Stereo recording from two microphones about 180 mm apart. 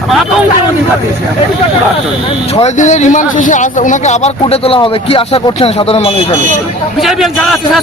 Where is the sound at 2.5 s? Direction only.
40° left (ahead or behind).